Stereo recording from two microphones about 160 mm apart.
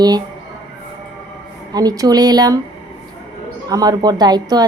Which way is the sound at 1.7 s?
25° right (ahead or behind).